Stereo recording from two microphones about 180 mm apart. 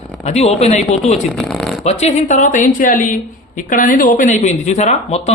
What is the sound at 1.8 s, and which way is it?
A woman's voice, 45° left (ahead or behind).